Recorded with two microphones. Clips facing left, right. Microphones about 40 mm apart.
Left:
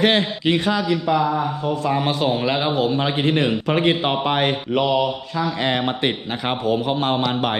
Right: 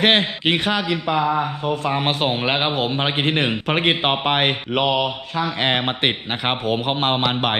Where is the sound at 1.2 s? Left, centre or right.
Right.